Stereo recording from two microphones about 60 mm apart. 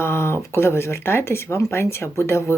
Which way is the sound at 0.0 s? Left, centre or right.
Left.